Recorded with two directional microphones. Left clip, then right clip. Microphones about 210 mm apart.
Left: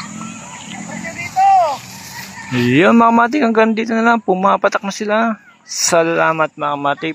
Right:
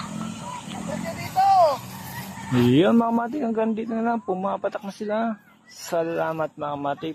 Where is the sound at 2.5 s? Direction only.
5° left (ahead or behind).